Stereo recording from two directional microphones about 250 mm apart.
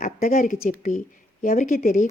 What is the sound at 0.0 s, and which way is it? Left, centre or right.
A woman's voice, left.